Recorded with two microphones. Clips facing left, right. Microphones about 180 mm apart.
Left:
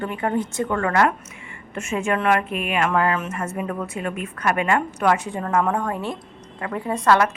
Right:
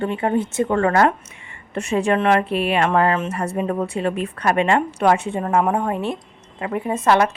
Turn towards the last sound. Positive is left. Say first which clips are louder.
# right 1 dB
turn(degrees=-25)  # may be behind; listen again after turning